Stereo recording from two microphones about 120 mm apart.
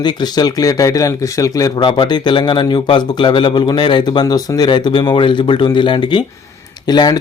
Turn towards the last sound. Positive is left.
turn(degrees=35)  # may be behind; listen again after turning